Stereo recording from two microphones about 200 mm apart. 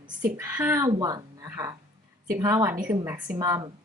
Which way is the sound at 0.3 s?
10° right (ahead or behind).